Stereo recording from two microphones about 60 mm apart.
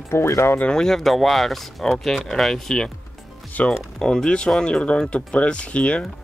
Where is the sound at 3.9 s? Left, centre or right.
Centre.